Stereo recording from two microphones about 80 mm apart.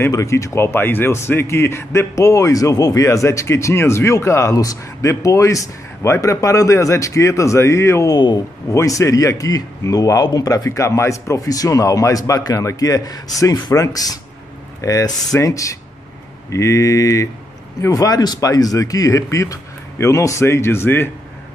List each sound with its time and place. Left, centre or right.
0.1 s speech: left
8.1 s speech: left
8.7 s speech: left